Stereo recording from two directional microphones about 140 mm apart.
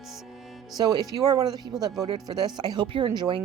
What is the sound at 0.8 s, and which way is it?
A woman's voice, 25° right (ahead or behind).